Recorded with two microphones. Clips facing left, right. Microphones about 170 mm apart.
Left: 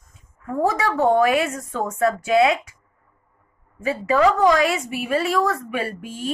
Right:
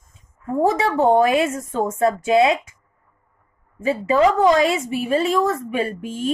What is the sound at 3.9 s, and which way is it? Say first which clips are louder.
A woman's voice: right 1 dB; 25° right (ahead or behind).